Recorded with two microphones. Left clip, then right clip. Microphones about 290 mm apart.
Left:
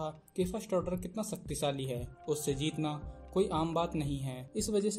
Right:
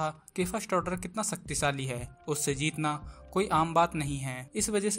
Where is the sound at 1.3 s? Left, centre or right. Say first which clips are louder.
Right 4 dB; right.